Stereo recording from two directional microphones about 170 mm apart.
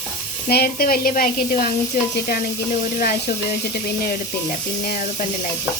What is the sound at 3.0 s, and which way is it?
Speech, 60° left (ahead or behind).